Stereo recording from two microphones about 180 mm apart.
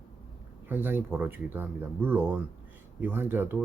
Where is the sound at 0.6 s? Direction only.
10° right (ahead or behind).